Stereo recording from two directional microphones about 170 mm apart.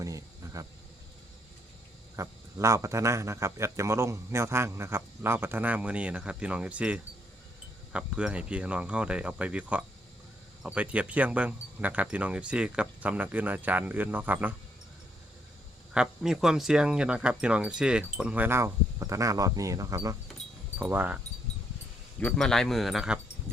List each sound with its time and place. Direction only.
0.0 s a sound: 20° right (ahead or behind)
2.1 s speech: 20° right (ahead or behind)
16.0 s speech: 5° right (ahead or behind)
22.2 s speech: 5° left (ahead or behind)